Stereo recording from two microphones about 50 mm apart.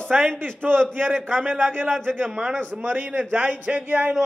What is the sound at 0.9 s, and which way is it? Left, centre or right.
A man's voice, right.